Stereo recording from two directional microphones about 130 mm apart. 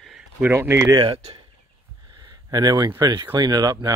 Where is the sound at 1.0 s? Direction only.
40° right (ahead or behind).